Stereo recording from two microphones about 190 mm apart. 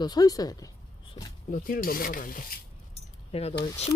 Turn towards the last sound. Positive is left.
turn(degrees=30)  # may be behind; listen again after turning